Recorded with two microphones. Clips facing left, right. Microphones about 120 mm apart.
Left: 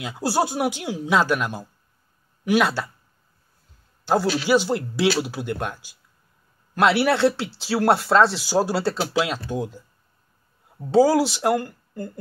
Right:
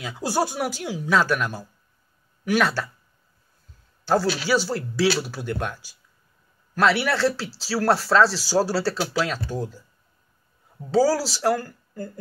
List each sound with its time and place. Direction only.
0.0 s speech: 15° left (ahead or behind)
4.1 s speech: 15° left (ahead or behind)
6.9 s speech: 25° left (ahead or behind)
11.0 s speech: 20° left (ahead or behind)